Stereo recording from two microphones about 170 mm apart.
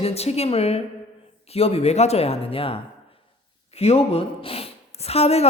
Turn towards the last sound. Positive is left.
turn(degrees=35)  # may be behind; listen again after turning